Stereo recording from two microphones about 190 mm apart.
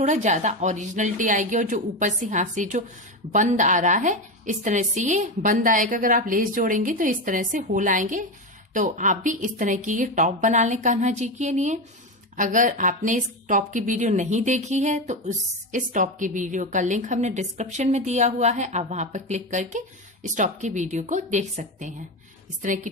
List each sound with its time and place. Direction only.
0.0 s a woman's voice: 40° right (ahead or behind)